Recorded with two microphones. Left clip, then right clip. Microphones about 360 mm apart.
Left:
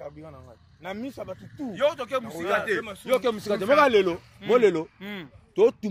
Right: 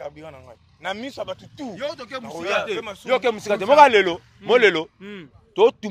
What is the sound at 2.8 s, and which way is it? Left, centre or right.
Speech, centre.